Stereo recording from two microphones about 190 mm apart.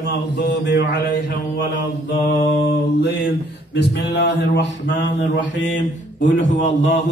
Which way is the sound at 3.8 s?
65° left (ahead or behind).